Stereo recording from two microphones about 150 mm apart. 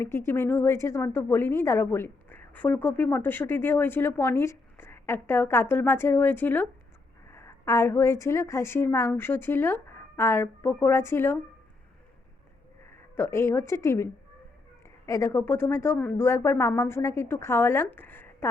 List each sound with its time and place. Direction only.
0.0 s speech: 15° left (ahead or behind)
13.1 s speech: 15° left (ahead or behind)